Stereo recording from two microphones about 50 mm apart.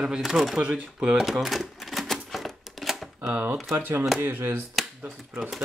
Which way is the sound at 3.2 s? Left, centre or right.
Right.